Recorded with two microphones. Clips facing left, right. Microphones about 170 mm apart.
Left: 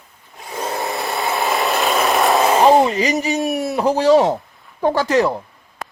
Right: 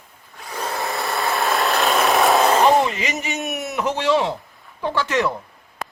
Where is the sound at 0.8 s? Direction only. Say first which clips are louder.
Even; centre (ahead or behind).